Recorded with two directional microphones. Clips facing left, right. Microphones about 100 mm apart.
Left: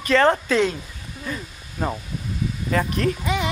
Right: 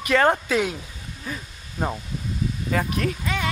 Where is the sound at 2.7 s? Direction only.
5° right (ahead or behind).